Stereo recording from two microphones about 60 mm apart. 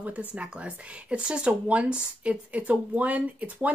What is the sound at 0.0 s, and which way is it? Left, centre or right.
Speech, right.